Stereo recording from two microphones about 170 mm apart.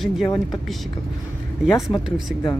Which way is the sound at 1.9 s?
25° left (ahead or behind).